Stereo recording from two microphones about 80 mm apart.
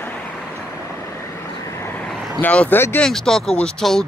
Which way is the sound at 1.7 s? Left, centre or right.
Left.